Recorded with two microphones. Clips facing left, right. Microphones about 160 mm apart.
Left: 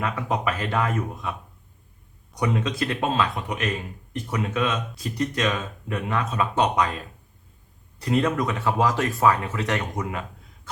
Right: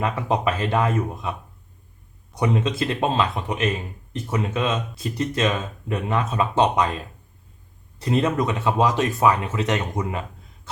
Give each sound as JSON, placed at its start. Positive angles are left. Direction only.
{"t": 0.0, "sound": "speech", "side_deg": -25}
{"t": 7.9, "sound": "speech", "side_deg": -25}